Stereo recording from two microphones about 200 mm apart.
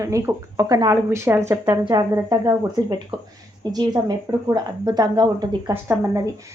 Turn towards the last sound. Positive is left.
turn(degrees=-15)  # may be behind; listen again after turning